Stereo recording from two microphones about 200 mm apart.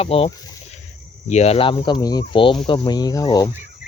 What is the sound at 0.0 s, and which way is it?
Speech, 30° left (ahead or behind).